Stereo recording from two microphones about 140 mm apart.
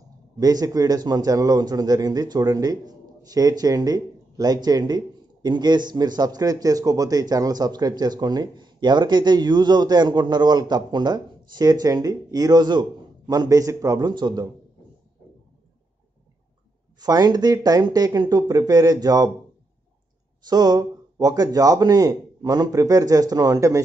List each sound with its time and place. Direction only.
0.4 s a man's voice: 25° right (ahead or behind)
17.0 s a man's voice: 30° right (ahead or behind)
20.4 s a man's voice: 30° right (ahead or behind)